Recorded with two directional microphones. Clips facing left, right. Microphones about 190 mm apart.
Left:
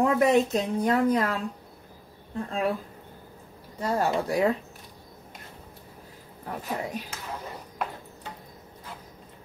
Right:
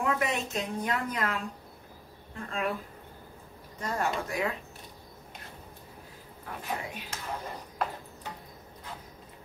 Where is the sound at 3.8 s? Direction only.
35° left (ahead or behind).